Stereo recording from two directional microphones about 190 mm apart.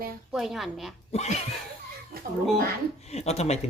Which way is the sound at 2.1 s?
50° right (ahead or behind).